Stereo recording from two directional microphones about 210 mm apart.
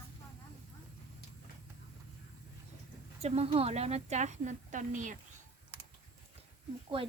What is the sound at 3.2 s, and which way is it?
A woman's voice, 30° right (ahead or behind).